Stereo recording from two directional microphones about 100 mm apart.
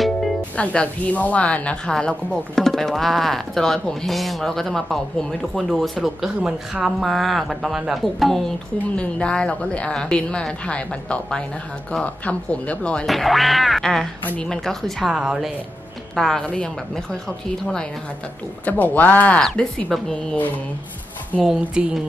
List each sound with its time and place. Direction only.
0.6 s a woman's voice: 15° left (ahead or behind)
18.7 s a woman's voice: 15° left (ahead or behind)
21.4 s speech: 5° right (ahead or behind)